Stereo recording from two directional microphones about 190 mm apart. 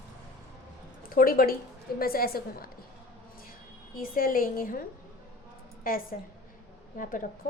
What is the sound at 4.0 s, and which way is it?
Speech, 50° left (ahead or behind).